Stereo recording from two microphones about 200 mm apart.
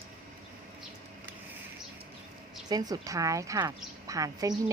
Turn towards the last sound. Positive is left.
turn(degrees=-15)  # may be behind; listen again after turning